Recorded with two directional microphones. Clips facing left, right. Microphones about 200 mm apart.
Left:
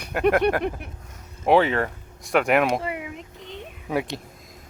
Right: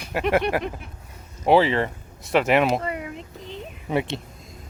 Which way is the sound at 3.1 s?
35° right (ahead or behind).